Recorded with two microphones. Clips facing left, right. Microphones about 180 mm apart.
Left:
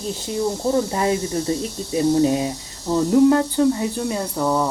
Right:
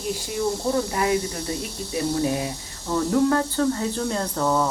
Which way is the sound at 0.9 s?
30° left (ahead or behind).